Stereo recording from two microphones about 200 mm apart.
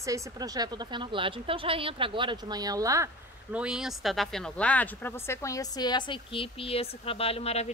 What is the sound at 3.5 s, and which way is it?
Speech, 5° right (ahead or behind).